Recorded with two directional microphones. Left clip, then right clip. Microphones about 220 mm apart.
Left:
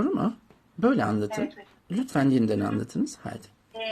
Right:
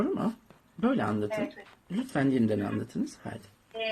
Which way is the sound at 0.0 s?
30° left (ahead or behind).